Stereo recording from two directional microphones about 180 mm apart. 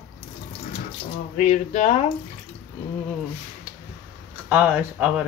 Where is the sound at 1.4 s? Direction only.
40° left (ahead or behind).